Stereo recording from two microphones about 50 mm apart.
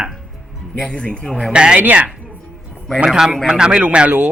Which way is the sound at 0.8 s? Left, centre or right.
Centre.